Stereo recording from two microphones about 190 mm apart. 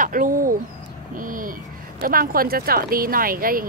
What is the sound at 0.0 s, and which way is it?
Owl, 45° right (ahead or behind).